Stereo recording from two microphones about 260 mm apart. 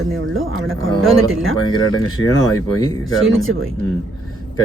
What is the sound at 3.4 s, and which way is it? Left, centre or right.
Speech, right.